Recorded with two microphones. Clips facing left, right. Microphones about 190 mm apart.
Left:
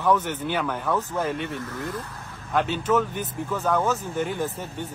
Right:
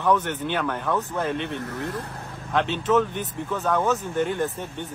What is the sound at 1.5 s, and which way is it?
Speech, 65° right (ahead or behind).